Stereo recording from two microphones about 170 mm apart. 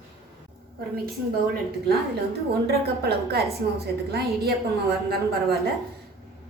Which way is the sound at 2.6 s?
65° right (ahead or behind).